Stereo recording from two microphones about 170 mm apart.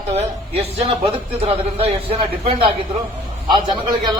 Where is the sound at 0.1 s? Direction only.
40° right (ahead or behind).